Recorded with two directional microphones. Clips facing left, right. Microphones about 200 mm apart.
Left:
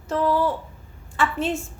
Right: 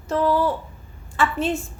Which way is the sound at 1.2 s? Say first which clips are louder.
Right 2 dB; 35° right (ahead or behind).